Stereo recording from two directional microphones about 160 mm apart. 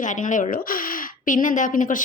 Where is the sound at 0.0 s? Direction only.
50° left (ahead or behind).